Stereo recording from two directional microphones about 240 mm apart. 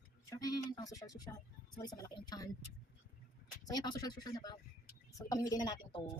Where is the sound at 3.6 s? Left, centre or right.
Centre.